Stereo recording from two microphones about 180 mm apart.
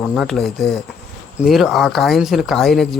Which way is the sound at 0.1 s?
Centre (ahead or behind).